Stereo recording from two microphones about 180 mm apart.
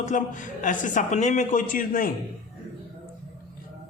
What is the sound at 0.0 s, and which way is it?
Speech, 45° left (ahead or behind).